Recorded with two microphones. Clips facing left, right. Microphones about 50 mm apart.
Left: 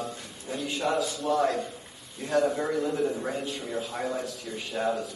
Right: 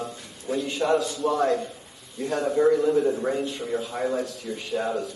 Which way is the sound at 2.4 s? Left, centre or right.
Centre.